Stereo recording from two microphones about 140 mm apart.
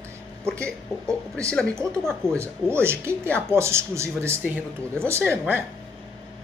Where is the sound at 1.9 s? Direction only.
5° left (ahead or behind).